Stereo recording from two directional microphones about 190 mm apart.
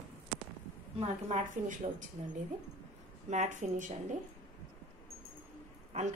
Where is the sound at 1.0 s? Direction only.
40° right (ahead or behind).